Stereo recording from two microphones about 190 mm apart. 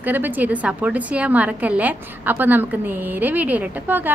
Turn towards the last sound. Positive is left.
turn(degrees=-10)  # may be behind; listen again after turning